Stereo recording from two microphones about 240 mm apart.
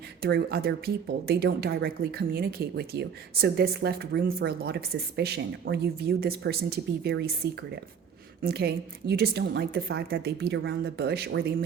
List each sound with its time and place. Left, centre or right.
0.2 s speech: right
8.4 s a woman's voice: right